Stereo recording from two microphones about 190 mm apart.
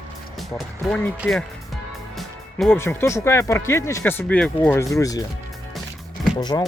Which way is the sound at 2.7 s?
10° left (ahead or behind).